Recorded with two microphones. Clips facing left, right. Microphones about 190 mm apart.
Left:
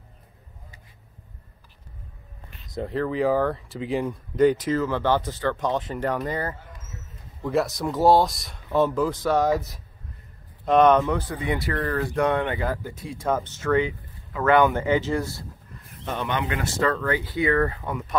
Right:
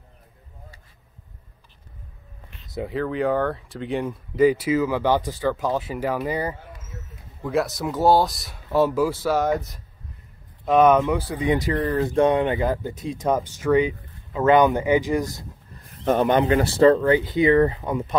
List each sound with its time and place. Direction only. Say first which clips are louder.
2.7 s speech: even; centre (ahead or behind)
16.0 s speech: right 9 dB; 45° right (ahead or behind); by 18.1 s 20° right (ahead or behind)